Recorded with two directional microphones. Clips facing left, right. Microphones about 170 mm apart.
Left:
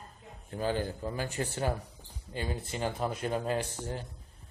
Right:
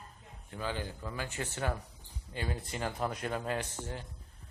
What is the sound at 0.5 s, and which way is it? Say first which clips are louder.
Speech: left 6 dB; 40° left (ahead or behind).